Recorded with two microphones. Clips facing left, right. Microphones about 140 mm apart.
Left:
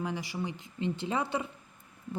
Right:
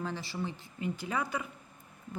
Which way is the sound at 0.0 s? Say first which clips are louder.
Left 2 dB; 15° left (ahead or behind).